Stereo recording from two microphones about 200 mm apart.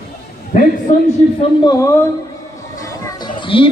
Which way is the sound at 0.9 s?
40° left (ahead or behind).